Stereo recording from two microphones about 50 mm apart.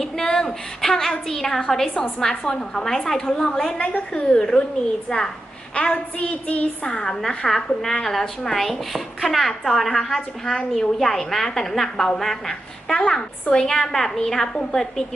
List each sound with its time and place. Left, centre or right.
0.0 s a sound: centre
1.3 s a woman's voice: centre
3.8 s a woman's voice: left; by 5.3 s centre
5.7 s a woman's voice: left
6.9 s a woman's voice: centre